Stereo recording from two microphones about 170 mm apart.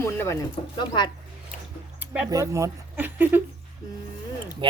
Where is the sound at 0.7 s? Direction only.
25° left (ahead or behind).